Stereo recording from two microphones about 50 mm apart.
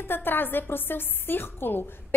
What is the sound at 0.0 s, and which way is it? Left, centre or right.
A woman's voice, left.